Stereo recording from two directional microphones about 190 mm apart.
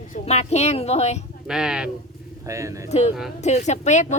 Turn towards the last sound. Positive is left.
turn(degrees=40)  # may be behind; listen again after turning